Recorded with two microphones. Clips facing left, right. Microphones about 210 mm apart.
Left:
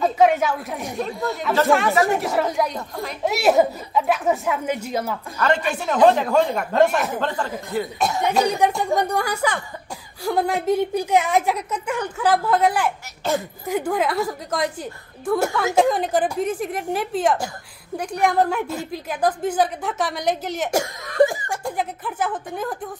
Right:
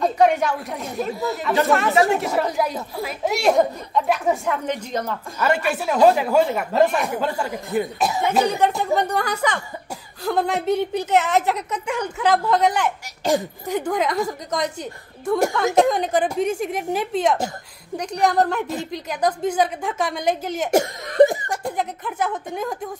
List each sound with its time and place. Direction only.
0.0 s a woman's voice: centre (ahead or behind)
5.4 s speech: 10° right (ahead or behind)
8.5 s a woman's voice: 15° left (ahead or behind)
15.2 s speech: 15° right (ahead or behind)
15.5 s a woman's voice: centre (ahead or behind)
20.7 s speech: 20° right (ahead or behind)
21.7 s speech: 5° left (ahead or behind)